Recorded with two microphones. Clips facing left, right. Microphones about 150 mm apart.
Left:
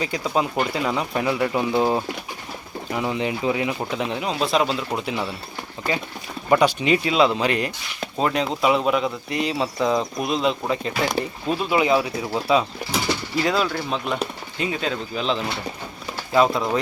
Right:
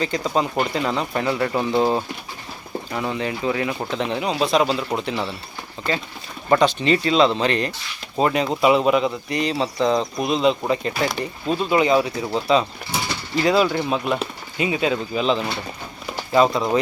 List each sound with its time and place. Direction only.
0.0 s speech: 5° left (ahead or behind)
3.8 s speech: 5° left (ahead or behind)
6.5 s speech: 10° left (ahead or behind)
8.2 s speech: centre (ahead or behind)